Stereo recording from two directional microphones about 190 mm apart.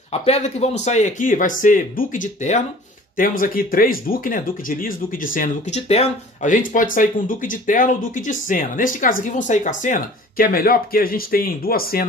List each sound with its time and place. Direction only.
0.1 s speech: 35° left (ahead or behind); by 12.1 s 50° left (ahead or behind)